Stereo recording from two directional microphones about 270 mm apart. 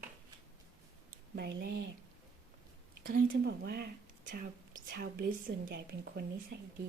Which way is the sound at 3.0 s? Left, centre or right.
Right.